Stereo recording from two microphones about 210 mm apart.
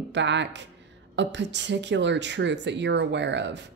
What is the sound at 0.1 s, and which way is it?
Speech, 60° right (ahead or behind).